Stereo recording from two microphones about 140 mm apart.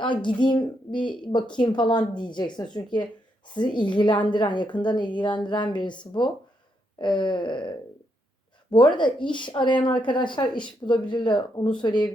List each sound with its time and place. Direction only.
0.0 s a woman's voice: 35° left (ahead or behind)
8.7 s a woman's voice: 35° left (ahead or behind)